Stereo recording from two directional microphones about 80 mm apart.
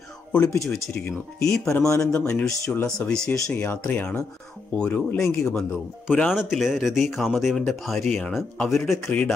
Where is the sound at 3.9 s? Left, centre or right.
Centre.